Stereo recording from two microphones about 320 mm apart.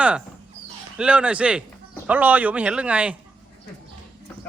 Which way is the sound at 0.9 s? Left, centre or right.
Centre.